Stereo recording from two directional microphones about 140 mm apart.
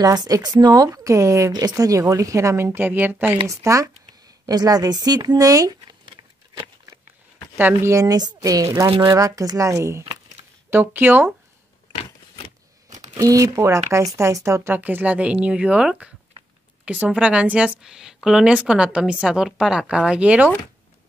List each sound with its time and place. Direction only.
0.0 s speech: 30° right (ahead or behind)
7.5 s a woman's voice: 15° right (ahead or behind)
13.1 s a woman's voice: 25° right (ahead or behind); by 20.5 s 10° right (ahead or behind)